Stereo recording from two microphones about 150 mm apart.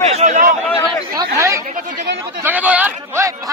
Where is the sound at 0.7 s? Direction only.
15° left (ahead or behind).